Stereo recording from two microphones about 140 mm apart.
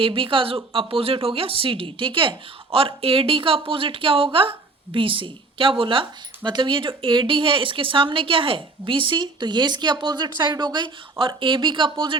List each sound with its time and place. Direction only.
0.0 s speech: 40° right (ahead or behind)